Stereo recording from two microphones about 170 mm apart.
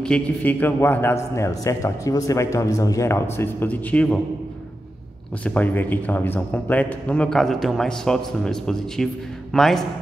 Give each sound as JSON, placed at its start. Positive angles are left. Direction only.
{"t": 0.0, "sound": "a man's voice", "side_deg": 10}
{"t": 5.4, "sound": "a man's voice", "side_deg": 10}